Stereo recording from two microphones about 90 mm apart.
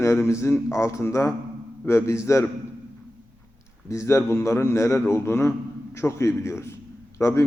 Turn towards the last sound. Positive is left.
turn(degrees=35)  # may be behind; listen again after turning